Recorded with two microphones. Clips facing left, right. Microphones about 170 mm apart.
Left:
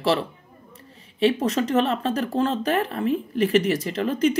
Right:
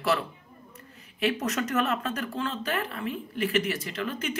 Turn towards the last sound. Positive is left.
turn(degrees=35)  # may be behind; listen again after turning